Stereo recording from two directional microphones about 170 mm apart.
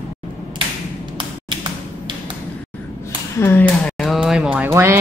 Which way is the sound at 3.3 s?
15° left (ahead or behind).